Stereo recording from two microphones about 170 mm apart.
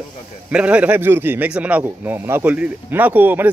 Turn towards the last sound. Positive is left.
turn(degrees=-10)  # may be behind; listen again after turning